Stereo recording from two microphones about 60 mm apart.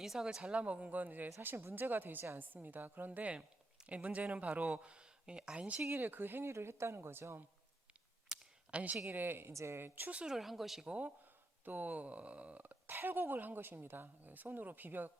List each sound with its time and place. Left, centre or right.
0.0 s speech: centre
5.8 s speech: right
6.5 s speech: right
8.3 s a sound: centre
8.7 s speech: right
9.1 s speech: right
9.5 s speech: right
10.1 s speech: centre
10.3 s speech: centre
11.6 s speech: right